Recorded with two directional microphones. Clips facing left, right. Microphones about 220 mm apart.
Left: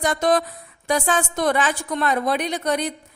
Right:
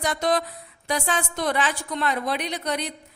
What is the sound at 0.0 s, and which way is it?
A woman's voice, 50° left (ahead or behind).